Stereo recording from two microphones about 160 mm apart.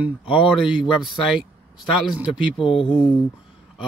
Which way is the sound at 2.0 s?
5° right (ahead or behind).